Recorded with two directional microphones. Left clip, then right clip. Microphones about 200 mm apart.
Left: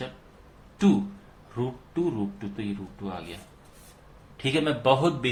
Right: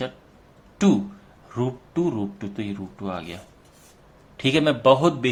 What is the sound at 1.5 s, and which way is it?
Speech, 40° right (ahead or behind).